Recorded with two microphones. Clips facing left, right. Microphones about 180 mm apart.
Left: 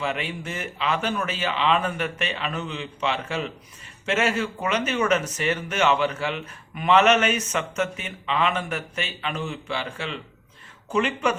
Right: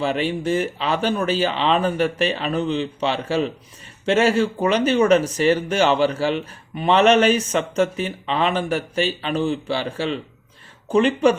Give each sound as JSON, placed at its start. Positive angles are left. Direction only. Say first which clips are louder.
{"t": 0.0, "sound": "speech", "louder": "right 7 dB", "side_deg": -35}